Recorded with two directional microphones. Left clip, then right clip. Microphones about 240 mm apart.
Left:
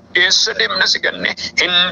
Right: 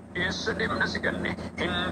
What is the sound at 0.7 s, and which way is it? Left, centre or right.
Speech, left.